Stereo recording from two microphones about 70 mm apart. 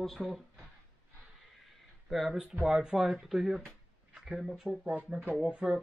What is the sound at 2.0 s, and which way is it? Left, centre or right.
Speech, centre.